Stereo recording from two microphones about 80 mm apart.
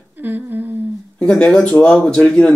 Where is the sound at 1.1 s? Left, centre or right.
Centre.